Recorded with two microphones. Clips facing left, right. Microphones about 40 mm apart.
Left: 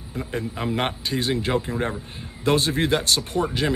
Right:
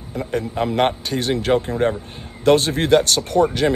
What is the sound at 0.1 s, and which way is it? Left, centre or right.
A man's voice, right.